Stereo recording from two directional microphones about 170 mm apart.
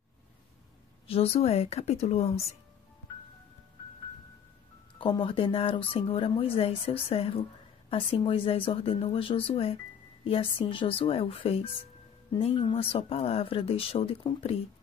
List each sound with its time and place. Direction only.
1.0 s speech: 35° left (ahead or behind)
4.9 s speech: 30° left (ahead or behind)